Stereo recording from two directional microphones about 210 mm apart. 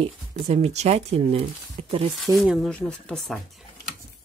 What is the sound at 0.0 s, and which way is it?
Speech, 30° right (ahead or behind).